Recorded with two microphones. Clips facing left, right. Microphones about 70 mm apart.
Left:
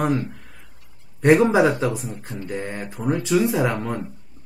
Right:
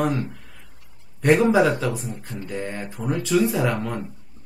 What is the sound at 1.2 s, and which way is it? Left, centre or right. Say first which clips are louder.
Speech: left 2 dB; left.